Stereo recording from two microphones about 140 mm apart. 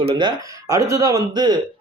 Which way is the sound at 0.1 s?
30° right (ahead or behind).